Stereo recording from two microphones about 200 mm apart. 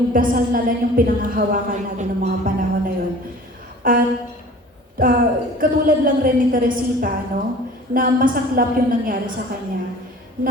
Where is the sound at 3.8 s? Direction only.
45° right (ahead or behind).